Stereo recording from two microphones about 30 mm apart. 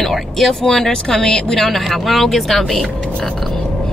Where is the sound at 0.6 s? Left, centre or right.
Centre.